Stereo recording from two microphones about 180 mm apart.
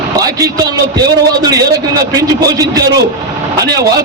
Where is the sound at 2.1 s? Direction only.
20° right (ahead or behind).